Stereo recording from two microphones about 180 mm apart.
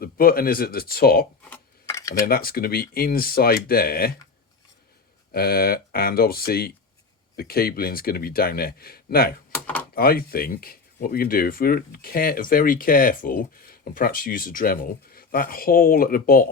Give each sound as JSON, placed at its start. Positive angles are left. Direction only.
{"t": 0.0, "sound": "speech", "side_deg": 55}
{"t": 1.5, "sound": "cutlery", "side_deg": 10}
{"t": 2.2, "sound": "speech", "side_deg": 55}
{"t": 5.3, "sound": "speech", "side_deg": 55}